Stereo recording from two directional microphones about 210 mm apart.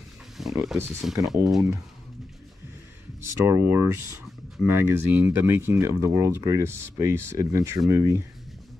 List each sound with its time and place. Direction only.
0.4 s speech: centre (ahead or behind)
3.2 s speech: 10° right (ahead or behind)